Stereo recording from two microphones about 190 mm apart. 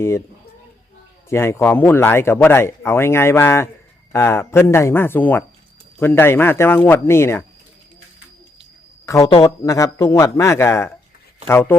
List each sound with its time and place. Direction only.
1.3 s speech: 15° left (ahead or behind)
9.0 s speech: 15° left (ahead or behind)